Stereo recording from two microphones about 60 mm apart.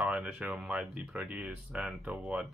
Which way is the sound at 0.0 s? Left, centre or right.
Centre.